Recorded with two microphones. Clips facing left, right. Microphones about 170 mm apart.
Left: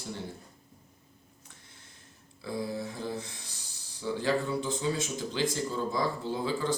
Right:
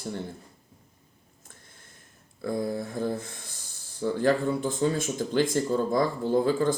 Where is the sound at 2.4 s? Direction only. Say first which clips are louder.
Right 5 dB; 50° right (ahead or behind).